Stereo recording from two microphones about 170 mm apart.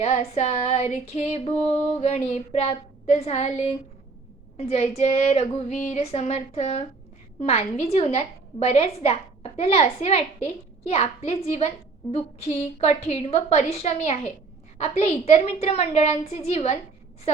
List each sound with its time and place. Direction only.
0.0 s a woman's voice: 40° left (ahead or behind)